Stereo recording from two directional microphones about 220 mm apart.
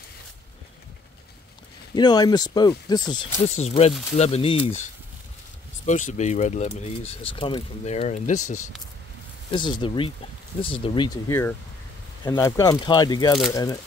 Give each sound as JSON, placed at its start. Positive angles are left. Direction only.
{"t": 2.0, "sound": "speech", "side_deg": 20}
{"t": 3.4, "sound": "speech", "side_deg": 30}
{"t": 9.5, "sound": "speech", "side_deg": 20}